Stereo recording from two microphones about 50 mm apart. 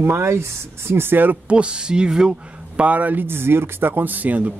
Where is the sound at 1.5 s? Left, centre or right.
Right.